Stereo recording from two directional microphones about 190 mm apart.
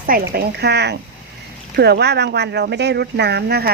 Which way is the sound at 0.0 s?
50° right (ahead or behind).